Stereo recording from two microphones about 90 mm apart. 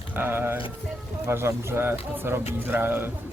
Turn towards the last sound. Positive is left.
turn(degrees=-25)  # may be behind; listen again after turning